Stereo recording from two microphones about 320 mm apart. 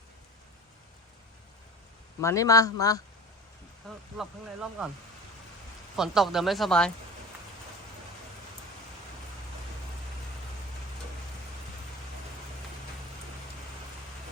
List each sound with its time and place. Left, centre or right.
2.2 s speech: centre
3.8 s speech: centre
6.0 s speech: centre